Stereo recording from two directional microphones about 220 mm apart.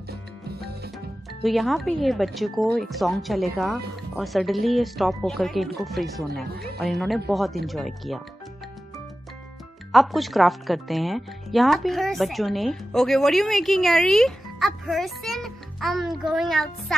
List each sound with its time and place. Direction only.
0.5 s music: 45° right (ahead or behind)
1.4 s speech: centre (ahead or behind)
9.9 s speech: centre (ahead or behind)